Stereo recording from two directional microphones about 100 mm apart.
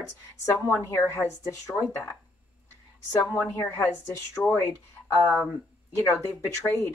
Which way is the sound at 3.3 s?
25° left (ahead or behind).